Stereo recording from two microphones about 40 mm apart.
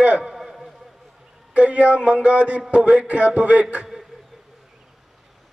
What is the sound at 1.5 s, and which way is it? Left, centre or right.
A man's voice, right.